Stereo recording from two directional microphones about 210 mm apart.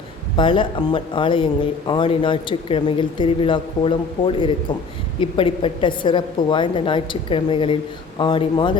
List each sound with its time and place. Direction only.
0.3 s speech: 25° left (ahead or behind)